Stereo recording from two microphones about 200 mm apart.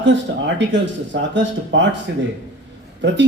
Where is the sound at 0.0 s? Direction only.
65° right (ahead or behind).